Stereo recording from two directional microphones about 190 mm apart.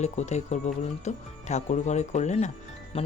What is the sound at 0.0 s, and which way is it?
Speech, 35° left (ahead or behind).